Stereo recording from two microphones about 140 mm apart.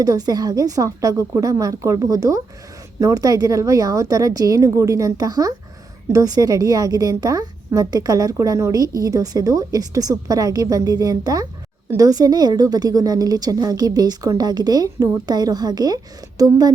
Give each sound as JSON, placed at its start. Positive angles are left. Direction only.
{"t": 0.0, "sound": "a woman's voice", "side_deg": -25}